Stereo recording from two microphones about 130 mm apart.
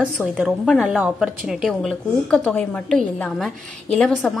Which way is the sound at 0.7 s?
5° right (ahead or behind).